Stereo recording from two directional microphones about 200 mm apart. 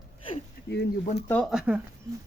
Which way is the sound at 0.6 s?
50° left (ahead or behind).